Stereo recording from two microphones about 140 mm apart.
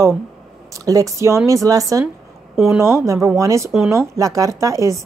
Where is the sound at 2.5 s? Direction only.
5° right (ahead or behind).